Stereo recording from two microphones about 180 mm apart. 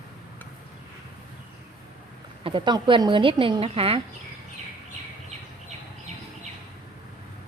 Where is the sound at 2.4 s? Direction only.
25° right (ahead or behind).